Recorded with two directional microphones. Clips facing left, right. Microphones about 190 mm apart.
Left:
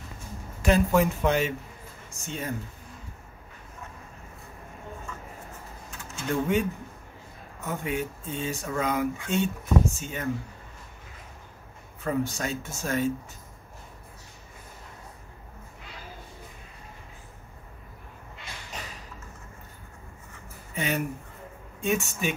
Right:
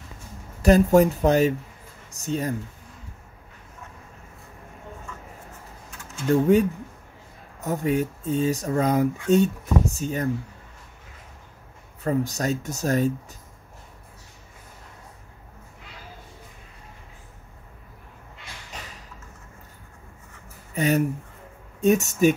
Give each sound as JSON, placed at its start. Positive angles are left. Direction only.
{"t": 0.6, "sound": "speech", "side_deg": -40}
{"t": 6.3, "sound": "speech", "side_deg": -35}
{"t": 7.6, "sound": "speech", "side_deg": -40}
{"t": 12.0, "sound": "speech", "side_deg": -40}
{"t": 20.7, "sound": "speech", "side_deg": -40}